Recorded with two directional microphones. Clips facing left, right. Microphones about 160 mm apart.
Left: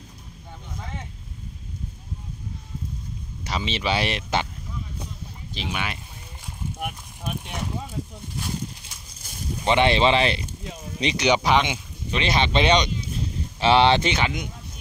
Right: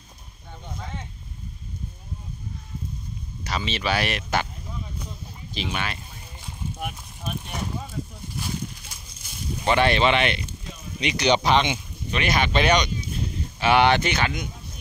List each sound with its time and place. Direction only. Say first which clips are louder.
3.4 s speech: left 1 dB; 20° left (ahead or behind)
5.7 s speech: left 1 dB; 10° left (ahead or behind)
6.8 s a sound: left 1 dB; 15° left (ahead or behind)
9.7 s speech: left 1 dB; 25° left (ahead or behind)
11.1 s speech: even; 15° left (ahead or behind)
12.2 s speech: left 1 dB; 25° left (ahead or behind)